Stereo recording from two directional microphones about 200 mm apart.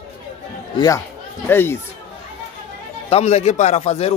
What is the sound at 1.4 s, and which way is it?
Speech, 10° left (ahead or behind).